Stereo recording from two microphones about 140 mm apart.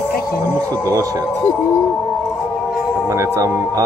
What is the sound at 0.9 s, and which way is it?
Speech, 25° right (ahead or behind).